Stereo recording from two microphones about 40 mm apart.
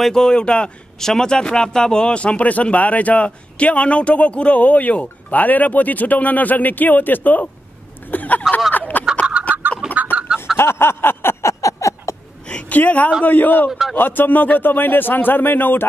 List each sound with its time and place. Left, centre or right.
0.1 s speech: centre
0.9 s speech: centre
2.1 s speech: left
8.7 s a sound: left
9.5 s chicken: right
10.0 s chicken: right
10.4 s a sound: left
12.6 s speech: left
13.7 s speech: centre
13.9 s speech: left